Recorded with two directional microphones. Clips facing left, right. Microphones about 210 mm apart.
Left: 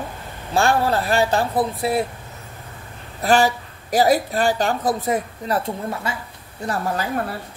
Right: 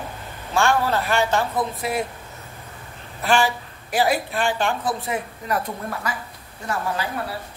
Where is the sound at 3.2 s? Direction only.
40° left (ahead or behind).